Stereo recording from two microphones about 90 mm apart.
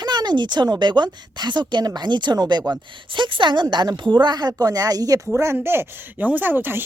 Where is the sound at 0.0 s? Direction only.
50° right (ahead or behind).